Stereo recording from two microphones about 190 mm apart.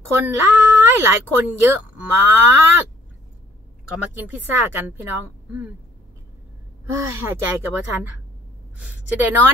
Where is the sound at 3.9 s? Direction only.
10° right (ahead or behind).